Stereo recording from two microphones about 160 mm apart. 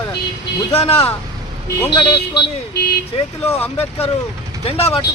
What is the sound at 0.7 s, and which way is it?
Speech, 40° left (ahead or behind).